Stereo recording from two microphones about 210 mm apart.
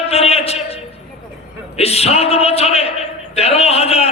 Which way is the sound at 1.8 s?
30° left (ahead or behind).